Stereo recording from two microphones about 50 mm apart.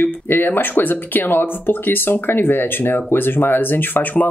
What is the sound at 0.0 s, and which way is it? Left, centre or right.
Speech, left.